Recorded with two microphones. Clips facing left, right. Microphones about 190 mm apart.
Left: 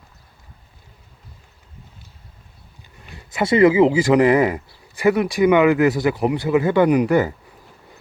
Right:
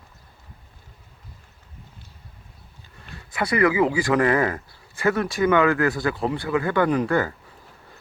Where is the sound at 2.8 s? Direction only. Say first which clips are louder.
Left 1 dB; 20° left (ahead or behind).